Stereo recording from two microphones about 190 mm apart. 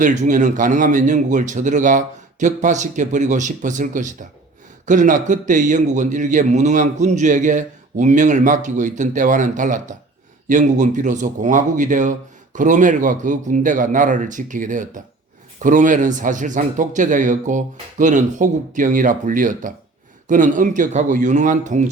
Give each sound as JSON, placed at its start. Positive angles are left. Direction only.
{"t": 0.0, "sound": "a man's voice", "side_deg": -40}